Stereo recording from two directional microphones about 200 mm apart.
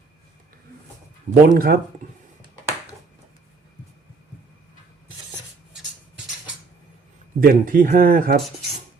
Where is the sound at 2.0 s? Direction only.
35° right (ahead or behind).